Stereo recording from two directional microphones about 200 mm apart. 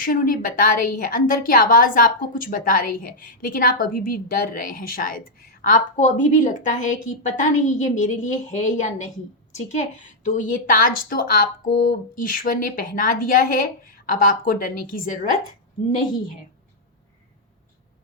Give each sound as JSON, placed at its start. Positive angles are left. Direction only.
{"t": 0.0, "sound": "a woman's voice", "side_deg": 45}